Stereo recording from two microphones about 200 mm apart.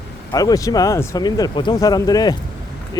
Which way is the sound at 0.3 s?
20° left (ahead or behind).